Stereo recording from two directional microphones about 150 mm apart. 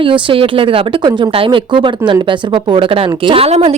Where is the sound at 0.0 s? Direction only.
35° right (ahead or behind).